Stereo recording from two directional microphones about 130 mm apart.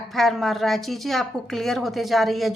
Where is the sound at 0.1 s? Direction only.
Centre (ahead or behind).